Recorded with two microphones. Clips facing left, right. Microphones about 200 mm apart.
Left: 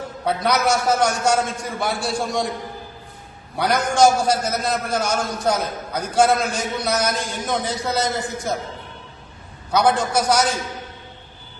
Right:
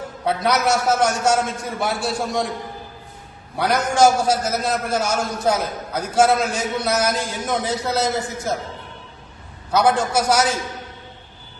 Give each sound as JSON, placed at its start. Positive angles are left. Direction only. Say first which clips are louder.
{"t": 0.3, "sound": "a man's voice", "louder": "even", "side_deg": 0}
{"t": 3.6, "sound": "a man's voice", "louder": "even", "side_deg": -5}
{"t": 9.7, "sound": "a man's voice", "louder": "right 1 dB", "side_deg": -5}